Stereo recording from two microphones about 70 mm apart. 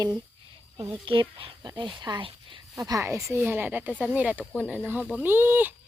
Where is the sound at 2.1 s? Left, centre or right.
Right.